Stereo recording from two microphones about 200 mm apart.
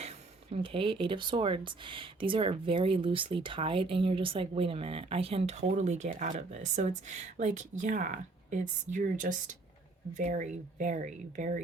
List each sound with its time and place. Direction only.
0.5 s speech: 25° right (ahead or behind)